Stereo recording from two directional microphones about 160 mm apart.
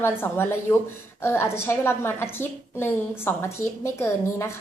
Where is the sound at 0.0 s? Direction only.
15° left (ahead or behind).